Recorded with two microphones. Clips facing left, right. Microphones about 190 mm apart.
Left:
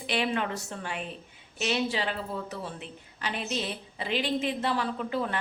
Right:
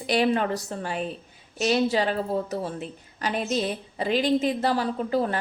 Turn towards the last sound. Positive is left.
turn(degrees=-40)  # may be behind; listen again after turning